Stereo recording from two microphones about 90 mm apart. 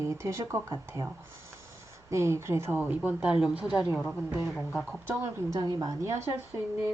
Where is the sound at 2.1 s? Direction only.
30° right (ahead or behind).